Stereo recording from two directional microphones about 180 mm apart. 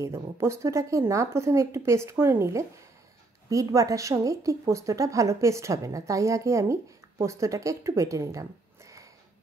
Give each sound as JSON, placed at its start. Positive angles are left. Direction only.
{"t": 0.0, "sound": "a woman's voice", "side_deg": -15}